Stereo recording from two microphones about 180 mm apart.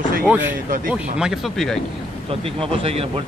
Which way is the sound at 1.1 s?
5° right (ahead or behind).